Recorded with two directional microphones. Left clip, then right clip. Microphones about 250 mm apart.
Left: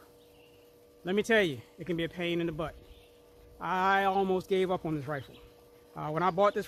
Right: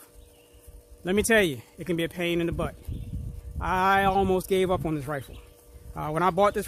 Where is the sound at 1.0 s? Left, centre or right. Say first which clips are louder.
Right 5 dB; right.